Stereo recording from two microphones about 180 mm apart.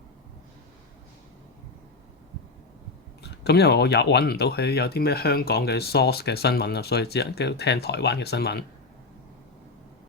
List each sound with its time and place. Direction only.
3.2 s speech: 65° left (ahead or behind)